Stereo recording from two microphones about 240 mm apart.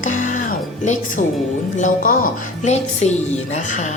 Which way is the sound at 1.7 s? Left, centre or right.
Left.